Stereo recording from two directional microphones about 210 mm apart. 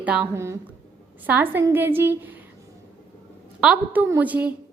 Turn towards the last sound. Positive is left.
turn(degrees=-5)  # may be behind; listen again after turning